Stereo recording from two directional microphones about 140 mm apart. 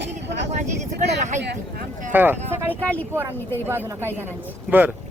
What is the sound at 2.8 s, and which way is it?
Speech, 10° left (ahead or behind).